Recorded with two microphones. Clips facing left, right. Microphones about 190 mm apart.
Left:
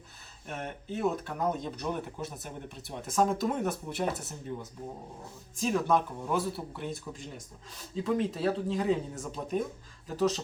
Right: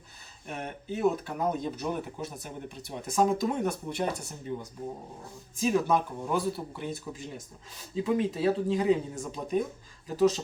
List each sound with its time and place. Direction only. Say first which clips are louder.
0.4 s speech: right 1 dB; centre (ahead or behind)